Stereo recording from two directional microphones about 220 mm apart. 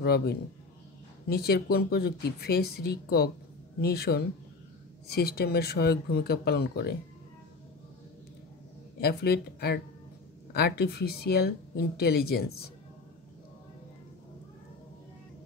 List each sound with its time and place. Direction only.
0.0 s speech: 45° left (ahead or behind)
9.0 s speech: 45° left (ahead or behind)